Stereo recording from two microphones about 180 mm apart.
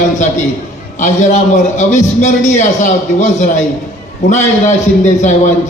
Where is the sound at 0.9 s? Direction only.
45° left (ahead or behind).